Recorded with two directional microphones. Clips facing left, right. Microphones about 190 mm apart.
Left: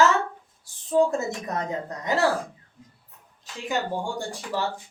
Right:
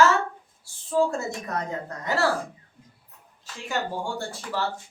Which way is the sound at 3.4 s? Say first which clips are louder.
Left 2 dB; 15° left (ahead or behind).